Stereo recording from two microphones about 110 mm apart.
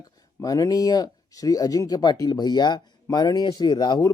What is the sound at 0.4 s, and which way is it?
Speech, 35° left (ahead or behind).